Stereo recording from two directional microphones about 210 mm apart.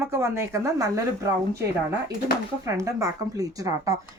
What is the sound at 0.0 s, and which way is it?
Speech, 10° right (ahead or behind).